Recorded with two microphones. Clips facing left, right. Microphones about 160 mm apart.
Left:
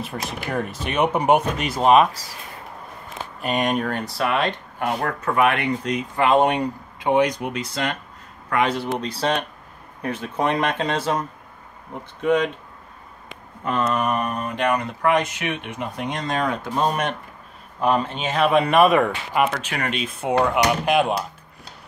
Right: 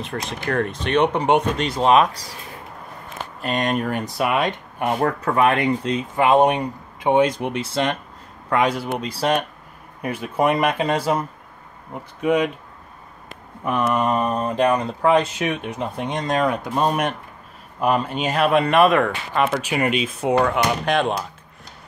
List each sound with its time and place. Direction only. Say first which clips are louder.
0.0 s speech: right 2 dB; 5° left (ahead or behind)
3.3 s speech: even; centre (ahead or behind)
4.0 s speech: right 1 dB; 15° right (ahead or behind)
5.2 s speech: even; 35° right (ahead or behind)
6.2 s speech: right 2 dB; 15° right (ahead or behind)
8.6 s speech: right 1 dB; 5° right (ahead or behind)
13.7 s speech: right 2 dB; 15° right (ahead or behind); by 16.1 s 35° right (ahead or behind)
16.1 s speech: right 3 dB; 20° right (ahead or behind)
16.3 s speech: right 2 dB; 5° right (ahead or behind)
19.5 s speech: right 6 dB; 10° right (ahead or behind)
20.5 s speech: left 1 dB; 5° left (ahead or behind)